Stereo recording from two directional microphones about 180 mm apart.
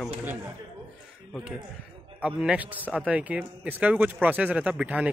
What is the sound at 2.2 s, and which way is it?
A man's voice, 5° right (ahead or behind).